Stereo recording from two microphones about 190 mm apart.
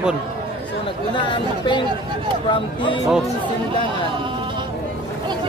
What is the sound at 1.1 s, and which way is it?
Speech, 25° left (ahead or behind).